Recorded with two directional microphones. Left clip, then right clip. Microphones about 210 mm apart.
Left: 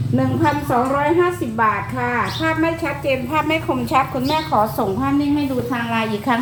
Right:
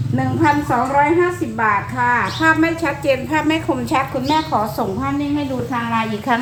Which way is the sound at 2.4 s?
15° right (ahead or behind).